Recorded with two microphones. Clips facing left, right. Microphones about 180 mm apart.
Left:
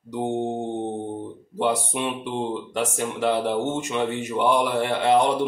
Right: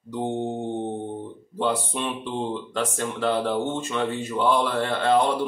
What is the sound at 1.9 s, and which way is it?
Speech, 15° left (ahead or behind).